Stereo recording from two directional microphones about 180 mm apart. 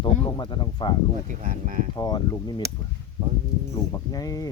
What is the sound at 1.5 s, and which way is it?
Speech, 45° right (ahead or behind).